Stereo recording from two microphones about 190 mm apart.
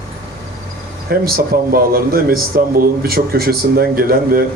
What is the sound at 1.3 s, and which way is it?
A man's voice, 50° right (ahead or behind).